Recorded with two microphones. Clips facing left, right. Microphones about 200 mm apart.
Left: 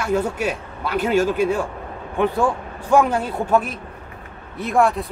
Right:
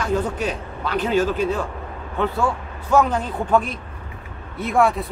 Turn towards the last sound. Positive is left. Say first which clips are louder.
# even
turn(degrees=0)  # may be behind; listen again after turning